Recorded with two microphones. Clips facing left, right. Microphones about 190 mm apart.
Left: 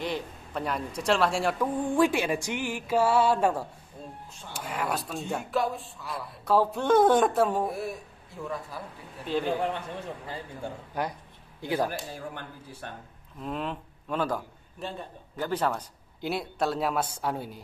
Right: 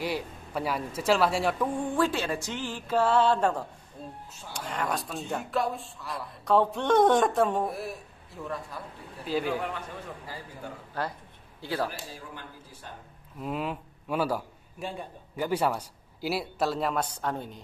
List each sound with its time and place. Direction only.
0.0 s a man's voice: 10° right (ahead or behind)
2.0 s a man's voice: 15° left (ahead or behind)
9.4 s a man's voice: 30° left (ahead or behind)
11.9 s speech: 60° left (ahead or behind)
13.4 s a man's voice: 5° right (ahead or behind)